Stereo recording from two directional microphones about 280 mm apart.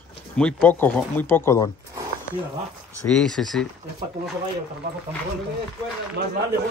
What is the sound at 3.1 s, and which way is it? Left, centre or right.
Speech, centre.